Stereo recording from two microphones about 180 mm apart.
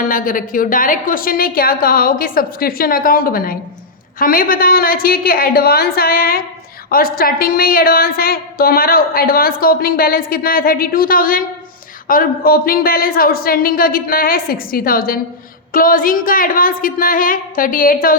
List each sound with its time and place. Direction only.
0.0 s a woman's voice: 50° left (ahead or behind)